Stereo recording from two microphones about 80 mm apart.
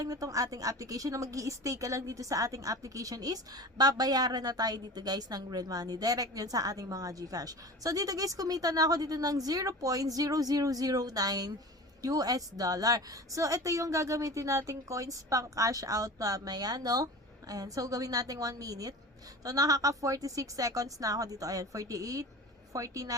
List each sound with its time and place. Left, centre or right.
0.0 s a woman's voice: right